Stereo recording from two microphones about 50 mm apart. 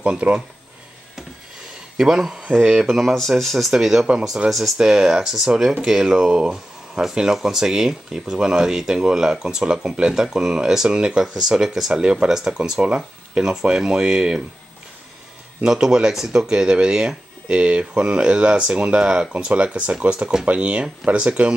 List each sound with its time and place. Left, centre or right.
0.0 s speech: right
2.0 s speech: centre
4.7 s speech: centre
11.9 s speech: centre
15.6 s speech: centre